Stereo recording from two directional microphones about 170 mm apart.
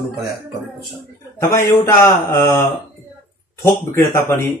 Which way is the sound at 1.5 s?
15° left (ahead or behind).